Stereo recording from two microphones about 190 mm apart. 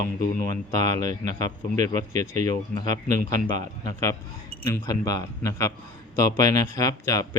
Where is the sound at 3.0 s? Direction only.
45° right (ahead or behind).